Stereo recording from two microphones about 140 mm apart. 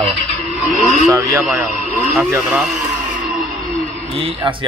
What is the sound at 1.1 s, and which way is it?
Speech, 25° right (ahead or behind).